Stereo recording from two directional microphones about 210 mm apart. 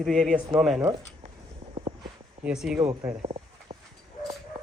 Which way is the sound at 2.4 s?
5° right (ahead or behind).